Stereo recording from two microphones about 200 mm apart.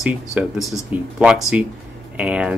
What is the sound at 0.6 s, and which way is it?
Speech, 15° left (ahead or behind).